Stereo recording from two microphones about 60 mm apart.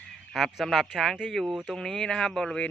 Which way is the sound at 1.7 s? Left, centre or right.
Centre.